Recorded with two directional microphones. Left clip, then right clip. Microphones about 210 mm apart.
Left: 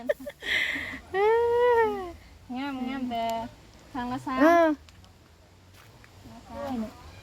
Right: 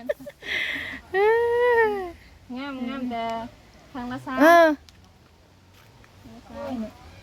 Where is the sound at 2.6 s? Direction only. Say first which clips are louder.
Right 1 dB; 30° right (ahead or behind); by 4.8 s 45° right (ahead or behind).